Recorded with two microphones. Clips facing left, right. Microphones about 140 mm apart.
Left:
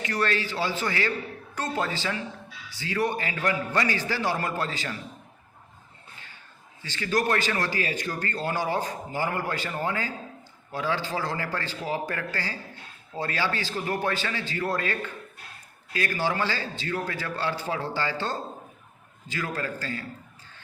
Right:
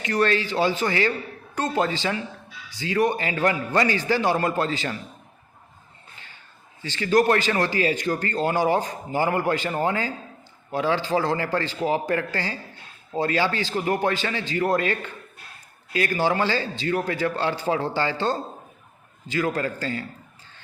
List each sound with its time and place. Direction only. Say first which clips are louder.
0.0 s a man's voice: right 5 dB; 25° right (ahead or behind)
6.8 s a man's voice: right 7 dB; 25° right (ahead or behind)